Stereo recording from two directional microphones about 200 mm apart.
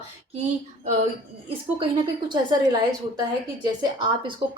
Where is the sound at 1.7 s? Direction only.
25° right (ahead or behind).